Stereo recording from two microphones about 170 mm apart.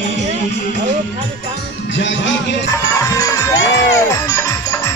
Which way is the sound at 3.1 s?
20° left (ahead or behind).